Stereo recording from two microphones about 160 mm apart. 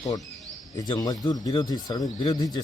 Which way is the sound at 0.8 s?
25° left (ahead or behind).